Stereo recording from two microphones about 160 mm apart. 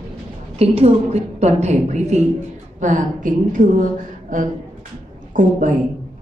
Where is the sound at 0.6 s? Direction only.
40° right (ahead or behind).